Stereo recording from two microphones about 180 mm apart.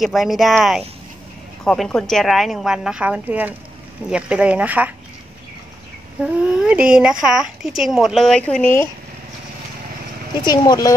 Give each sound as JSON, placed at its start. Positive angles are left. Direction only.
{"t": 0.0, "sound": "a woman's voice", "side_deg": 0}
{"t": 6.2, "sound": "speech", "side_deg": -5}
{"t": 10.4, "sound": "speech", "side_deg": 25}